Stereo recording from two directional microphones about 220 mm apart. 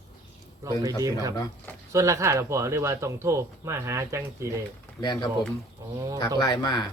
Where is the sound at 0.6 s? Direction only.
15° right (ahead or behind).